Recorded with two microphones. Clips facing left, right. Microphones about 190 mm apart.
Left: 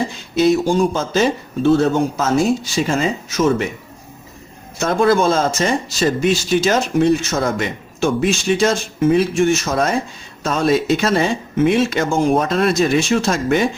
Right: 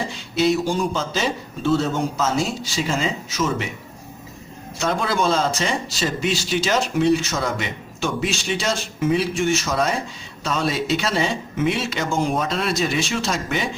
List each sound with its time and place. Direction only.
0.3 s speech: 45° left (ahead or behind)
4.8 s speech: 45° left (ahead or behind)